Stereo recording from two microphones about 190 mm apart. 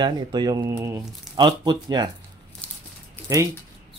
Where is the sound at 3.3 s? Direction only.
20° right (ahead or behind).